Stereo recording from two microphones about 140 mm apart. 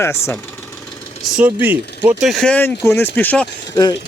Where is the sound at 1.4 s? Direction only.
15° right (ahead or behind).